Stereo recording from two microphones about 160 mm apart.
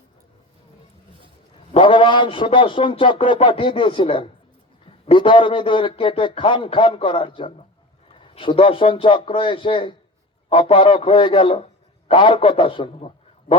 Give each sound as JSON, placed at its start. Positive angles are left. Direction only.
{"t": 1.7, "sound": "a man's voice", "side_deg": 30}